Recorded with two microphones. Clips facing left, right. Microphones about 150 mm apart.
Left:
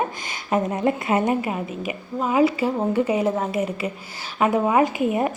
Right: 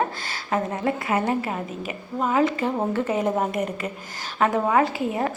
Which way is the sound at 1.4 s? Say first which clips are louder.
Left 2 dB; 10° left (ahead or behind).